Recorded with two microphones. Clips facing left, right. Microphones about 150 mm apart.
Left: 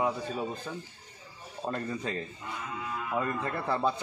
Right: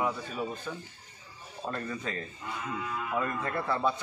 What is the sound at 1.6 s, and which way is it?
Speech, 30° left (ahead or behind).